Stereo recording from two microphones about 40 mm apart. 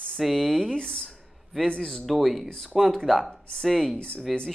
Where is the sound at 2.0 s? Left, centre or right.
Centre.